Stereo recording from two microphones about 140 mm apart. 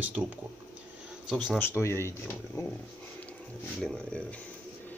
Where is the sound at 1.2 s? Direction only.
5° right (ahead or behind).